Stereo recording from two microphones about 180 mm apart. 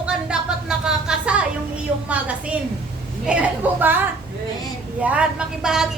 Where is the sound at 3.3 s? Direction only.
10° right (ahead or behind).